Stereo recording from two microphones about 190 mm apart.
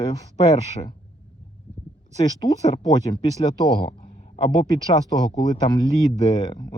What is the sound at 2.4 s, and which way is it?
Speech, 20° left (ahead or behind).